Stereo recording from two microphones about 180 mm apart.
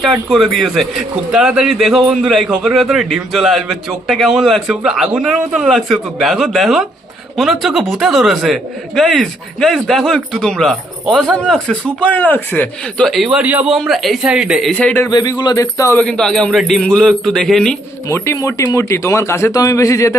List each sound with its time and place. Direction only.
0.0 s speech: centre (ahead or behind)
15.1 s speech: 25° left (ahead or behind)
16.0 s speech: 5° left (ahead or behind)
18.1 s speech: 15° left (ahead or behind)